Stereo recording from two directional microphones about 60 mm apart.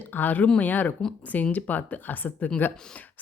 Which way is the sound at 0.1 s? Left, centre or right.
Left.